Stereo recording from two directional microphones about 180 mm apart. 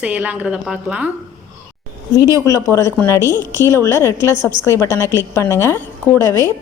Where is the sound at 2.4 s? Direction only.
15° left (ahead or behind).